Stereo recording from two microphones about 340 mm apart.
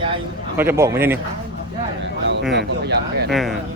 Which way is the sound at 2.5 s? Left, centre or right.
Right.